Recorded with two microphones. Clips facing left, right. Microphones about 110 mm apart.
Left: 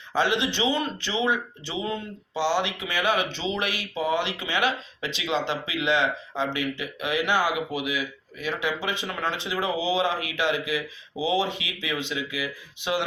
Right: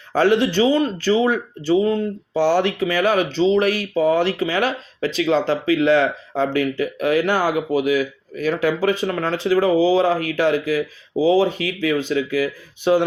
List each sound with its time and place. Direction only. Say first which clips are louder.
0.1 s speech: right 8 dB; 45° right (ahead or behind)